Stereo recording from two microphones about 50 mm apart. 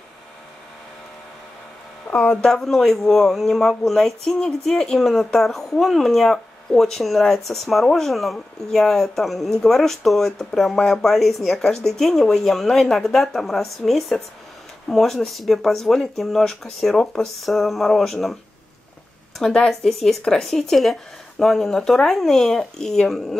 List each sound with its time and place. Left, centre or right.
2.0 s speech: left
2.4 s speech: centre
19.7 s speech: centre